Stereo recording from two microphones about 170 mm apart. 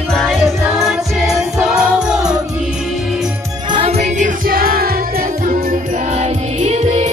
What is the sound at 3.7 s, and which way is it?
Music, 35° right (ahead or behind).